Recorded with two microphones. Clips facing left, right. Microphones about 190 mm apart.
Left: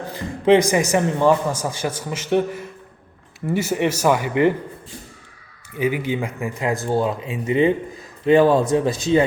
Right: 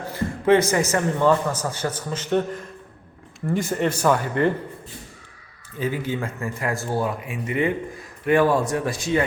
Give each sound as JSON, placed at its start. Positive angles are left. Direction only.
{"t": 0.1, "sound": "a man's voice", "side_deg": 15}
{"t": 5.7, "sound": "speech", "side_deg": 15}